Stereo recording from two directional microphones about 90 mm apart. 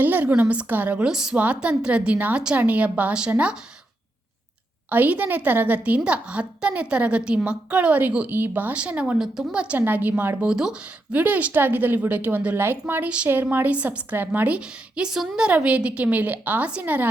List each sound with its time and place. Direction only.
0.0 s a woman's voice: 20° right (ahead or behind)
4.9 s a woman's voice: 20° right (ahead or behind)
10.5 s a woman's voice: 10° right (ahead or behind)